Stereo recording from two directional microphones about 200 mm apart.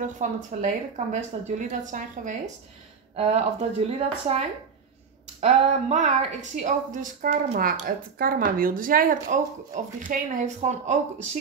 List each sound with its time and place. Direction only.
0.2 s a woman's voice: 40° right (ahead or behind)